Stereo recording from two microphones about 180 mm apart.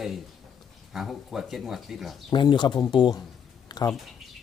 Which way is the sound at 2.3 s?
25° left (ahead or behind).